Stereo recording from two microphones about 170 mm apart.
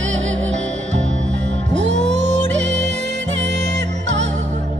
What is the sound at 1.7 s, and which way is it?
Music, 90° right.